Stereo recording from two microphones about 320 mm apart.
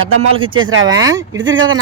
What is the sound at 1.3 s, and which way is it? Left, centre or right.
Speech, right.